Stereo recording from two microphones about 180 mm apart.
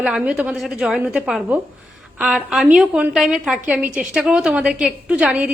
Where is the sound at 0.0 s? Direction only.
5° right (ahead or behind).